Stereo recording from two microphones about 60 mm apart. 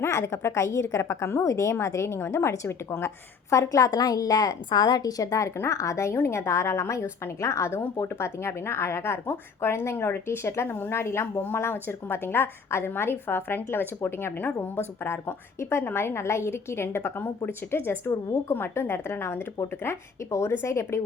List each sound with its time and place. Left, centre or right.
0.0 s speech: left
3.5 s a woman's voice: left
5.5 s speech: left
11.0 s a woman's voice: left